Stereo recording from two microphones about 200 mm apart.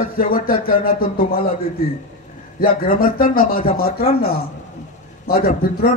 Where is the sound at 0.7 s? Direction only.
45° left (ahead or behind).